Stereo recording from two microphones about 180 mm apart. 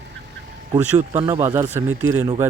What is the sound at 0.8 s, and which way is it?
Speech, 40° right (ahead or behind).